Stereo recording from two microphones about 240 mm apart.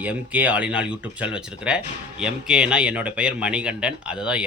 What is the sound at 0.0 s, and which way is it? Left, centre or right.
Speech, centre.